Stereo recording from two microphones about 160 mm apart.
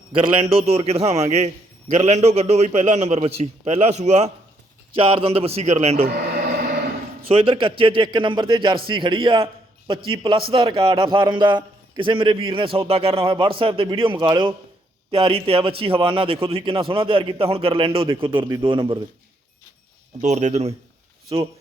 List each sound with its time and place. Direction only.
0.5 s a man's voice: 40° right (ahead or behind)
7.3 s a man's voice: 35° right (ahead or behind)
18.3 s a man's voice: 25° right (ahead or behind)
20.2 s a man's voice: 45° right (ahead or behind)
21.3 s a man's voice: 30° right (ahead or behind)